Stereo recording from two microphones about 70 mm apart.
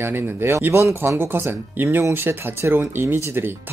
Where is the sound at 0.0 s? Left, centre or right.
Right.